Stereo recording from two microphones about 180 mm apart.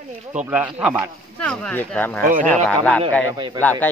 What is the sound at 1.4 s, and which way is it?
Speech, 5° left (ahead or behind).